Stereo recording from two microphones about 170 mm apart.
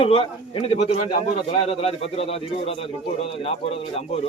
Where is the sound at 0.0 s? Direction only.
35° left (ahead or behind).